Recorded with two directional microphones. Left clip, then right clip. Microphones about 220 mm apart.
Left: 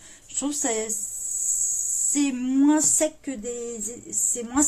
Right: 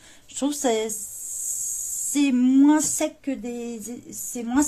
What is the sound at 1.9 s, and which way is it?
Speech, 25° right (ahead or behind).